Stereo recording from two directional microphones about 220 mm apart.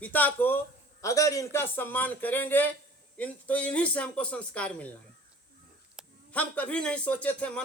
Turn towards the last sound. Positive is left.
turn(degrees=5)  # may be behind; listen again after turning